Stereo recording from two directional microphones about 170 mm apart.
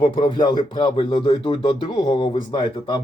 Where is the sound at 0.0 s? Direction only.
25° left (ahead or behind).